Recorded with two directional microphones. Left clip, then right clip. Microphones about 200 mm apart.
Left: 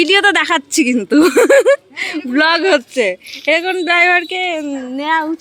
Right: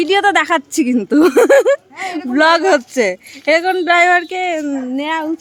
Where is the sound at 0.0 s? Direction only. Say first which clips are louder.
Left 1 dB; 5° right (ahead or behind).